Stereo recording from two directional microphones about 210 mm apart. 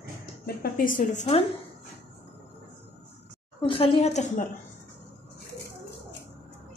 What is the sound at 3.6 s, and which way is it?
Speech, 25° left (ahead or behind).